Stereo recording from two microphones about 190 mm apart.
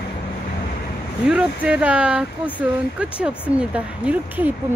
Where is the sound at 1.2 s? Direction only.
5° right (ahead or behind).